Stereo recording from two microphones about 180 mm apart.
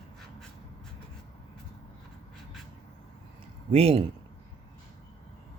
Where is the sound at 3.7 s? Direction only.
35° right (ahead or behind).